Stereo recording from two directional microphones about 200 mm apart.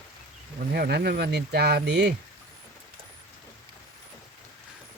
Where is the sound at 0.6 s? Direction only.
50° right (ahead or behind).